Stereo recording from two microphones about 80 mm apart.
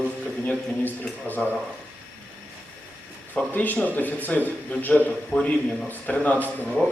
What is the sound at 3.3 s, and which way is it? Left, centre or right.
A man's voice, left.